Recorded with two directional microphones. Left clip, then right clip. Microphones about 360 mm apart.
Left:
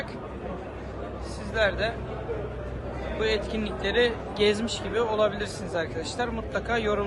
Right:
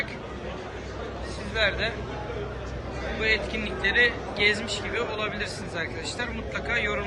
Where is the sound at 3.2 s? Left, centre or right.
Centre.